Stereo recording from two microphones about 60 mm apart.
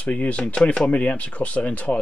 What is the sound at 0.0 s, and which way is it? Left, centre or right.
Speech, left.